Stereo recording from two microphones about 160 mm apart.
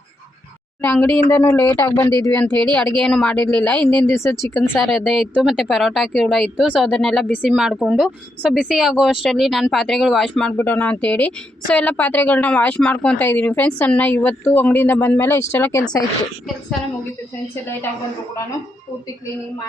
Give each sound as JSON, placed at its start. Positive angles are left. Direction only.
{"t": 0.8, "sound": "speech", "side_deg": 15}